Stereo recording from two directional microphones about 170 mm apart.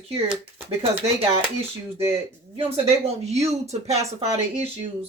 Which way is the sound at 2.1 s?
35° right (ahead or behind).